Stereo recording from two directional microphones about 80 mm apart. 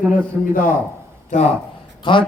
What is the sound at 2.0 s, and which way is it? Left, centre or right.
Speech, left.